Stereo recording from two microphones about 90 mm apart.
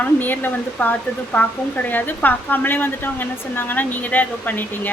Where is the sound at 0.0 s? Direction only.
20° left (ahead or behind).